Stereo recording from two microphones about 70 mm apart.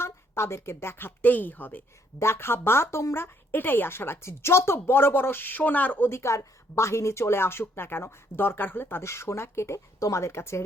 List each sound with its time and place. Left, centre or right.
0.0 s a woman's voice: left
2.1 s speech: left
6.1 s speech: left